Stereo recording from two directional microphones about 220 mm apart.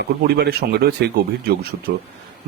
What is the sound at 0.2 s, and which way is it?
Speech, 45° right (ahead or behind).